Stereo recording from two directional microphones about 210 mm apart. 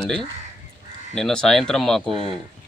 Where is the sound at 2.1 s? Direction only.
25° right (ahead or behind).